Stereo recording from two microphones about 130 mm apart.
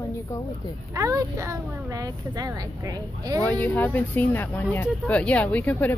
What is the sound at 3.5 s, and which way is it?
Speech, 10° left (ahead or behind).